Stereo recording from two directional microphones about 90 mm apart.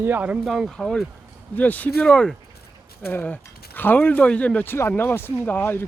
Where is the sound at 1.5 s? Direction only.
20° left (ahead or behind).